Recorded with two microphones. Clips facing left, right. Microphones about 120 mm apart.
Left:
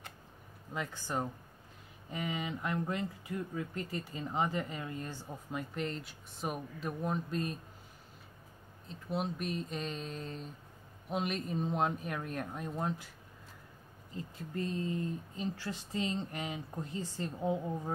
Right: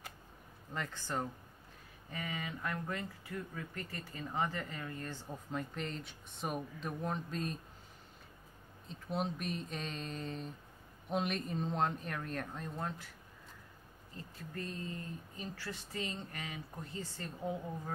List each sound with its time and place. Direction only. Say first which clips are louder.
0.7 s speech: left 2 dB; 10° left (ahead or behind)
8.8 s a sound: left 1 dB; centre (ahead or behind)
11.1 s speech: left 1 dB; centre (ahead or behind)
14.1 s speech: left 6 dB; 20° left (ahead or behind)